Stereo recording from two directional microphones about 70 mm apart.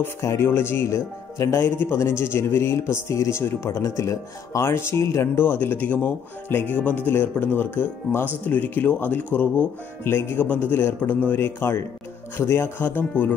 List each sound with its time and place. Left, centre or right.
0.0 s a man's voice: left
0.8 s speech: left
1.6 s a man's voice: left